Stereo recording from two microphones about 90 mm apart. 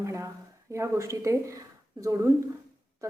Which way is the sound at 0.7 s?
35° right (ahead or behind).